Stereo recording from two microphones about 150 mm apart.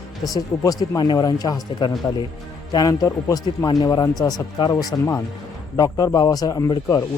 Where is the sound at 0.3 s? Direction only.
25° left (ahead or behind).